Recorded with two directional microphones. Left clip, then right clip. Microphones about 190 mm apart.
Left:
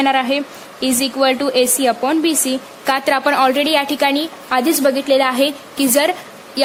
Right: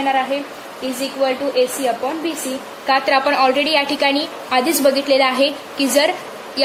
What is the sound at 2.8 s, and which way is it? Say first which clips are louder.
A woman's voice: even; 50° left (ahead or behind).